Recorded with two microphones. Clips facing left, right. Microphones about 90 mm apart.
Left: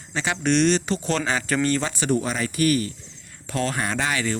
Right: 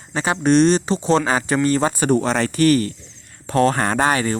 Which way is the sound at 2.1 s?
65° right (ahead or behind).